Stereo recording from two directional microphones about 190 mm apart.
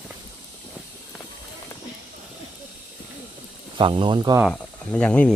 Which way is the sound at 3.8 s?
25° right (ahead or behind).